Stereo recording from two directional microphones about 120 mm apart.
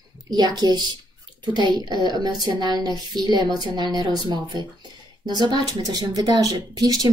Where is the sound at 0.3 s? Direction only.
35° right (ahead or behind).